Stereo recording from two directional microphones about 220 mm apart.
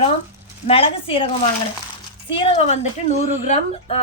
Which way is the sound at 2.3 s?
25° left (ahead or behind).